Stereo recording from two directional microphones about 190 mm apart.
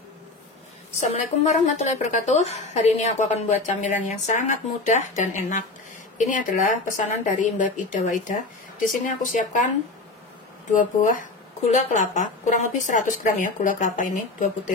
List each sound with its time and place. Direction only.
0.9 s a woman's voice: 35° left (ahead or behind)
10.7 s a woman's voice: 45° left (ahead or behind)